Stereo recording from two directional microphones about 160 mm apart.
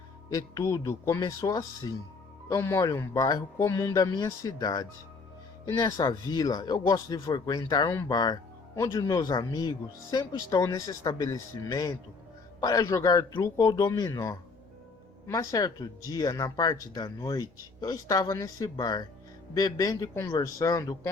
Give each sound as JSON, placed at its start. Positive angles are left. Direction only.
{"t": 0.3, "sound": "speech", "side_deg": 20}